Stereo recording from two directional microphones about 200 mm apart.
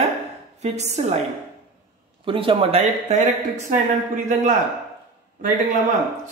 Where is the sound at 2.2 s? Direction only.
25° right (ahead or behind).